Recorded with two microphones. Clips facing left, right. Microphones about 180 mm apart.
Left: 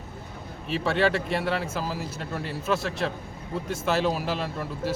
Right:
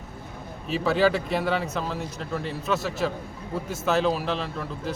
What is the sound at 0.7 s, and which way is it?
Speech, centre (ahead or behind).